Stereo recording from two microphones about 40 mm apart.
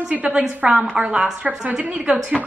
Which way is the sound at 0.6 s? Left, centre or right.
Right.